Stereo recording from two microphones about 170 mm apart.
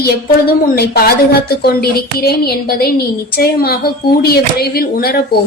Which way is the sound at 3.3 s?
65° left (ahead or behind).